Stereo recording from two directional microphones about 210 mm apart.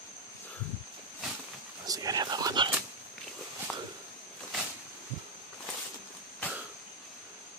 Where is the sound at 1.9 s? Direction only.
15° right (ahead or behind).